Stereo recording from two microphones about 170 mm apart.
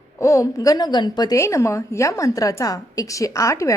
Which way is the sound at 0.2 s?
20° left (ahead or behind).